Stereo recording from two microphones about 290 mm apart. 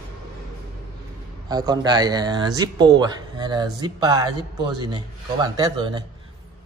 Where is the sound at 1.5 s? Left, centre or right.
Centre.